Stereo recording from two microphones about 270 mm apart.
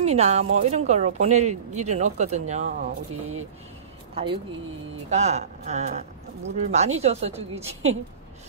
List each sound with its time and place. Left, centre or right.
0.0 s speech: right
4.1 s speech: centre